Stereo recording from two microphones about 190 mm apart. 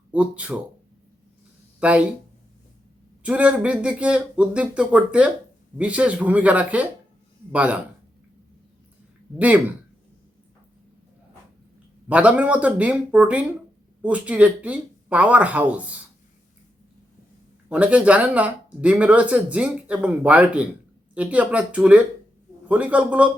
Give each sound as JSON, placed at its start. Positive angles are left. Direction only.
{"t": 0.1, "sound": "speech", "side_deg": -5}
{"t": 1.8, "sound": "speech", "side_deg": -5}
{"t": 3.2, "sound": "speech", "side_deg": -5}
{"t": 9.4, "sound": "speech", "side_deg": -10}
{"t": 12.0, "sound": "speech", "side_deg": -5}
{"t": 17.7, "sound": "speech", "side_deg": -5}